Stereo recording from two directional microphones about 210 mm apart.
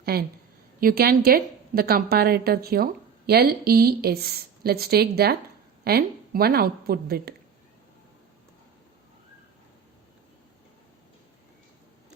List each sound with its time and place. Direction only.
0.0 s a woman's voice: 45° right (ahead or behind)